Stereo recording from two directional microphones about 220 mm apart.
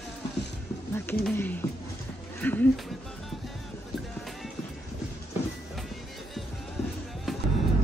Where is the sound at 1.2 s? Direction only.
10° left (ahead or behind).